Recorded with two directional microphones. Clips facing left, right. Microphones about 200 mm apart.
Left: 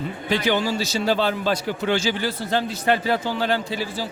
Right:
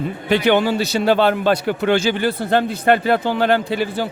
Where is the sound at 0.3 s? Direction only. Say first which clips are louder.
Right 6 dB; 60° right (ahead or behind).